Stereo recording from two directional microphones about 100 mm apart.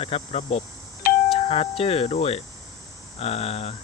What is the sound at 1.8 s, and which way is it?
Speech, 75° left (ahead or behind).